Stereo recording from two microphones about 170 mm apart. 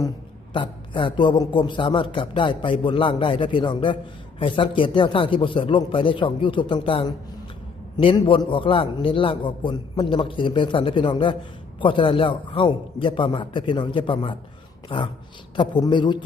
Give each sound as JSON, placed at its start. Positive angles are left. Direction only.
{"t": 0.5, "sound": "a man's voice", "side_deg": 30}